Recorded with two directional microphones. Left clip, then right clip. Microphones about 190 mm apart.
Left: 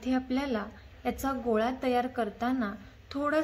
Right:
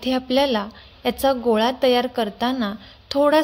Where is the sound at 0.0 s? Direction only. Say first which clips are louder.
Right 12 dB; 45° right (ahead or behind).